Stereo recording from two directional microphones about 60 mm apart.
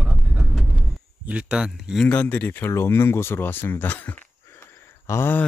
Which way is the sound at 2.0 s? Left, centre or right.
Left.